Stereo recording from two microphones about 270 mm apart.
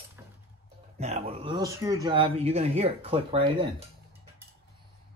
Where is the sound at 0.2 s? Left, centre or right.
Centre.